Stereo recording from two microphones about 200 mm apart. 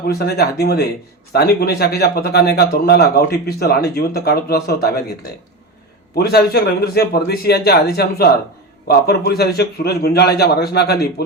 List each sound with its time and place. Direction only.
0.1 s speech: 50° left (ahead or behind)
6.1 s speech: 50° left (ahead or behind)